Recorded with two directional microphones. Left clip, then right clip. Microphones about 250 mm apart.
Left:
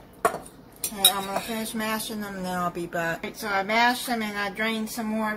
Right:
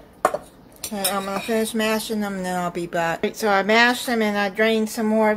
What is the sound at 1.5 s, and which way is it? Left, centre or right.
Speech, right.